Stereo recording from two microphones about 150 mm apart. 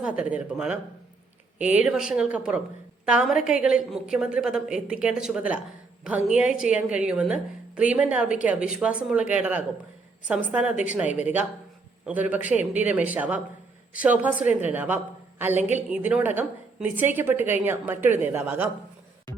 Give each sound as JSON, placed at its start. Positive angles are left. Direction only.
{"t": 0.0, "sound": "a woman's voice", "side_deg": -10}